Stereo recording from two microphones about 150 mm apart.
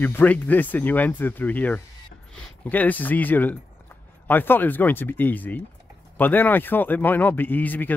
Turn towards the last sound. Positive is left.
turn(degrees=10)  # may be behind; listen again after turning